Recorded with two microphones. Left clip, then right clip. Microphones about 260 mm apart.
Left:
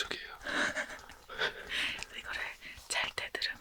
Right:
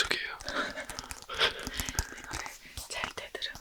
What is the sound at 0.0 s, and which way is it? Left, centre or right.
Whispering, right.